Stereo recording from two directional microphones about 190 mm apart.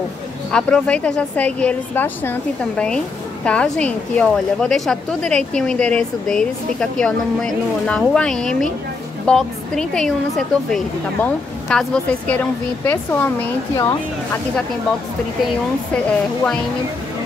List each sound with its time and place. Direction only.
0.5 s a woman's voice: 5° left (ahead or behind)